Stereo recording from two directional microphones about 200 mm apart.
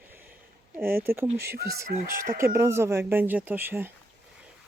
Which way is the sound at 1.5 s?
50° right (ahead or behind).